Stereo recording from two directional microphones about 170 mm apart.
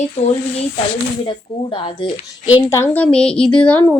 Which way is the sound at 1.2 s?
30° left (ahead or behind).